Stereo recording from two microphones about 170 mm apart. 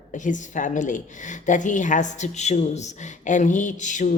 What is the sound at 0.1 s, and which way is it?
A woman's voice, 50° left (ahead or behind).